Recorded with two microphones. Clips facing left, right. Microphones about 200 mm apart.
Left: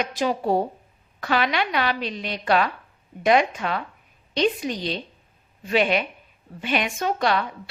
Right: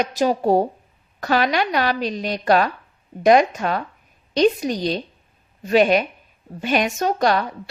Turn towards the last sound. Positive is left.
turn(degrees=-40)  # may be behind; listen again after turning